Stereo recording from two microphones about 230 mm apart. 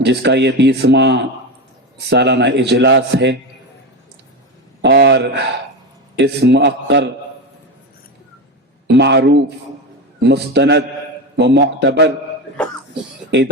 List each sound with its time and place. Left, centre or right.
0.0 s speech: right
4.8 s speech: right
8.9 s speech: right